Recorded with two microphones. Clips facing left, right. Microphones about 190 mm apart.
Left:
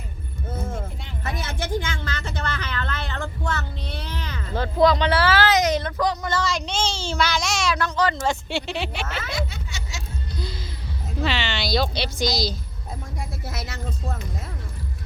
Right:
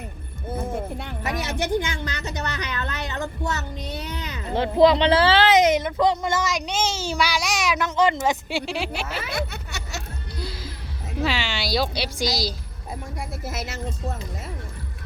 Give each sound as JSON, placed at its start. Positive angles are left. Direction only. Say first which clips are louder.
{"t": 1.2, "sound": "speech", "louder": "right 3 dB", "side_deg": -15}
{"t": 7.1, "sound": "a woman's voice", "louder": "even", "side_deg": -10}
{"t": 8.7, "sound": "speech", "louder": "right 1 dB", "side_deg": 0}
{"t": 9.3, "sound": "music", "louder": "right 1 dB", "side_deg": -65}
{"t": 11.1, "sound": "a woman's voice", "louder": "even", "side_deg": -5}